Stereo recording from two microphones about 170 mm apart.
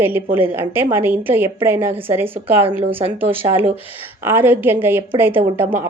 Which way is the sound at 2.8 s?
35° right (ahead or behind).